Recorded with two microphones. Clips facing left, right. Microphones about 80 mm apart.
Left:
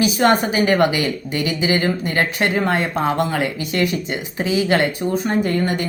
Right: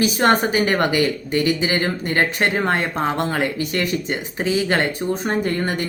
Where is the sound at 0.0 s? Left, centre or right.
Right.